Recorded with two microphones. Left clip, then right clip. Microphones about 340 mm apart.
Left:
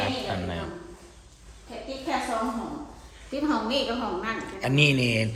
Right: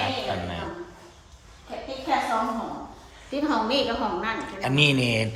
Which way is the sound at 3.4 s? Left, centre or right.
Right.